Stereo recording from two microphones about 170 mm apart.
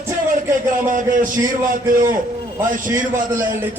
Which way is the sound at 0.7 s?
50° right (ahead or behind).